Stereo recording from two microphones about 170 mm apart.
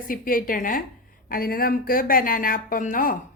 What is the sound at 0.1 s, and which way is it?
Speech, 55° left (ahead or behind).